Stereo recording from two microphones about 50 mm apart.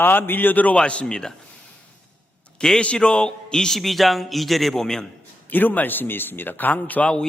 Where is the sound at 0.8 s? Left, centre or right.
Centre.